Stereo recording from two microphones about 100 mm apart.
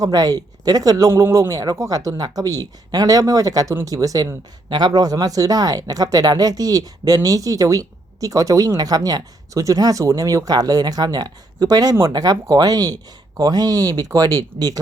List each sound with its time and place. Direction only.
0.0 s speech: 40° right (ahead or behind)